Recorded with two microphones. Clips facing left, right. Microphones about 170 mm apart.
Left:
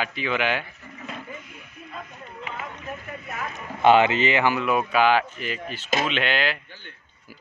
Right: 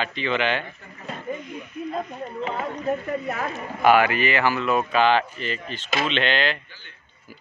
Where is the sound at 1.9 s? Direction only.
40° right (ahead or behind).